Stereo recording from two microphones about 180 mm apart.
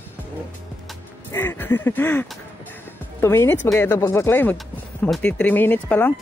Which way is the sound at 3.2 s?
15° left (ahead or behind).